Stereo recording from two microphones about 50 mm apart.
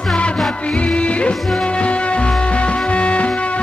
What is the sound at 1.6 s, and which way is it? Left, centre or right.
Music, left.